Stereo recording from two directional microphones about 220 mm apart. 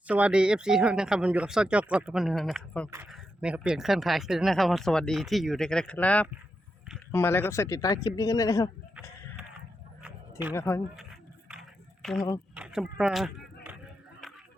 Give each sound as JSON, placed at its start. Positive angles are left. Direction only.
{"t": 0.1, "sound": "speech", "side_deg": -5}
{"t": 10.5, "sound": "speech", "side_deg": 10}
{"t": 10.9, "sound": "a sound", "side_deg": 0}
{"t": 12.0, "sound": "speech", "side_deg": 0}